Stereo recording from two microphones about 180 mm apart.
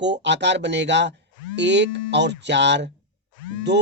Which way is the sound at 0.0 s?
75° right (ahead or behind).